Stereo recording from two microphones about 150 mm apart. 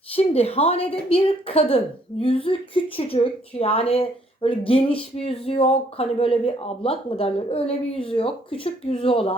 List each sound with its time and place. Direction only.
0.2 s a woman's voice: 40° left (ahead or behind)